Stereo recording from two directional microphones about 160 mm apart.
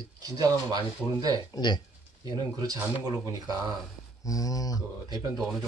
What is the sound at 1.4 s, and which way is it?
Speech, 25° left (ahead or behind).